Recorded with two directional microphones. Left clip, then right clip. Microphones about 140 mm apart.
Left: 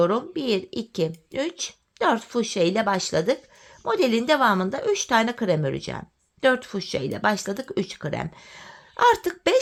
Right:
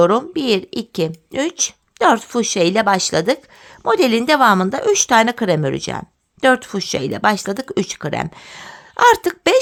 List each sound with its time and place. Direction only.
0.0 s speech: 50° right (ahead or behind)